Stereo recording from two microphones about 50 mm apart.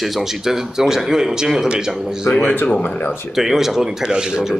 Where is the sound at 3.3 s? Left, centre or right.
Centre.